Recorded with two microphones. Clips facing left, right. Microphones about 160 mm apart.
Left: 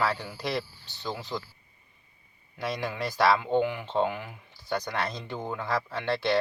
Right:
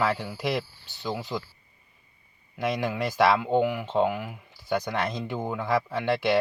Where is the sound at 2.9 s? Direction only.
10° right (ahead or behind).